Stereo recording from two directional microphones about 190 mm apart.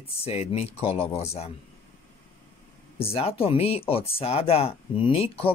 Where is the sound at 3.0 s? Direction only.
30° left (ahead or behind).